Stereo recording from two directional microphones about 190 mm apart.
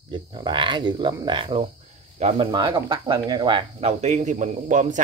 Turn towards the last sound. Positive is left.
turn(degrees=-40)  # may be behind; listen again after turning